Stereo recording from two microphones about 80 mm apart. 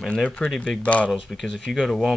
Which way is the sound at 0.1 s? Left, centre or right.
Centre.